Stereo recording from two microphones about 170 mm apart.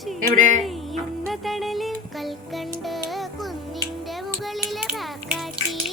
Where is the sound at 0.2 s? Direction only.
50° right (ahead or behind).